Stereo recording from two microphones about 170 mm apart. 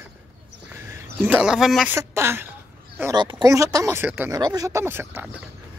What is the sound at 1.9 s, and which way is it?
Speech, 15° right (ahead or behind).